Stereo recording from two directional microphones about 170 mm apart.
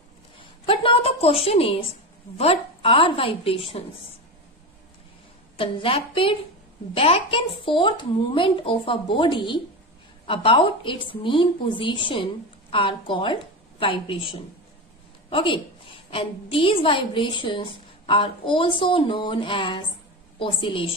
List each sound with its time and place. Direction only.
0.3 s a sound: 30° left (ahead or behind)
2.4 s a woman's voice: 35° left (ahead or behind)
5.5 s a woman's voice: 30° left (ahead or behind)